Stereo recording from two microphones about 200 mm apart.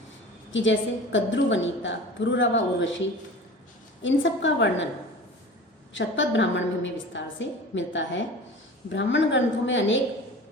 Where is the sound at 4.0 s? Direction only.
65° left (ahead or behind).